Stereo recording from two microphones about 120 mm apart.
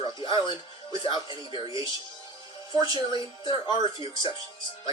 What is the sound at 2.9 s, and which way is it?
Speech, 40° left (ahead or behind).